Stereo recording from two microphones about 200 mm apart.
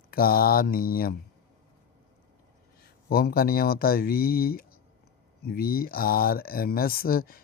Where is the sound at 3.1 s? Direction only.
50° left (ahead or behind).